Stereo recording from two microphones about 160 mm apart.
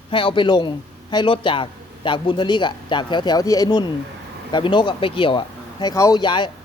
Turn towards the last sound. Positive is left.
turn(degrees=30)  # may be behind; listen again after turning